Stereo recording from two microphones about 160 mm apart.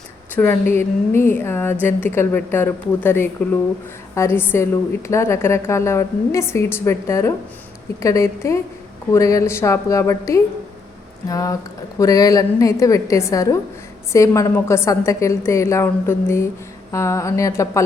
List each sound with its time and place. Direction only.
0.3 s a woman's voice: 15° left (ahead or behind)